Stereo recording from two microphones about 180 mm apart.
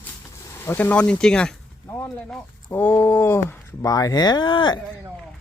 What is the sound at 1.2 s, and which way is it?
Speech, 5° left (ahead or behind).